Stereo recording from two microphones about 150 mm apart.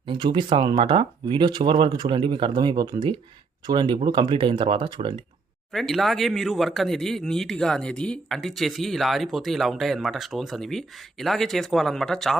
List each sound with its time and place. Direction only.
0.0 s speech: 30° right (ahead or behind)
5.7 s speech: centre (ahead or behind)